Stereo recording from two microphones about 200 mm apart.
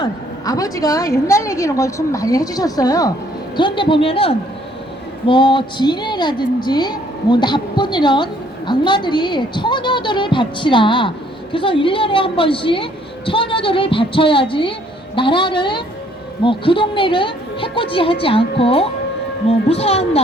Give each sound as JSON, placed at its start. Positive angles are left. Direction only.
{"t": 0.0, "sound": "a woman's voice", "side_deg": 20}